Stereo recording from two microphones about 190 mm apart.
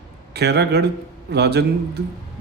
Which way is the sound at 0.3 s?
60° right (ahead or behind).